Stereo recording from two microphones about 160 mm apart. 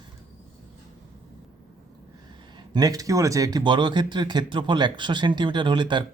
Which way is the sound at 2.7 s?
20° right (ahead or behind).